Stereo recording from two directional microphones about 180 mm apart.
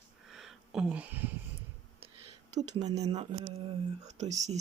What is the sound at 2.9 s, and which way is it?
Speech, 35° right (ahead or behind).